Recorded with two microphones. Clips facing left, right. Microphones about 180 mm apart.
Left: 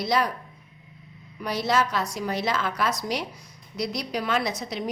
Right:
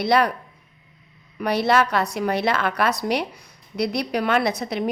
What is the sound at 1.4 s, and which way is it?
A woman's voice, 65° right (ahead or behind).